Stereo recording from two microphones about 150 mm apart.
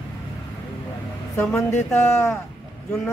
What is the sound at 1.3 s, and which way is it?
Speech, 15° left (ahead or behind).